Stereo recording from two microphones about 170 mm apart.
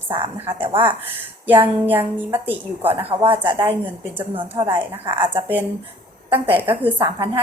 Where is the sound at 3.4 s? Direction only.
30° right (ahead or behind).